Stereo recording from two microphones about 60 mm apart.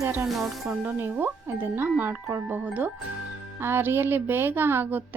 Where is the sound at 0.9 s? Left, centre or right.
Right.